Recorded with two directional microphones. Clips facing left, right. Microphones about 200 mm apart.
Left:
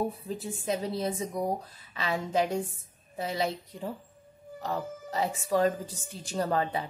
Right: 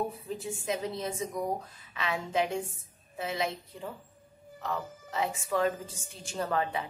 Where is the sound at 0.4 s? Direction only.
35° left (ahead or behind).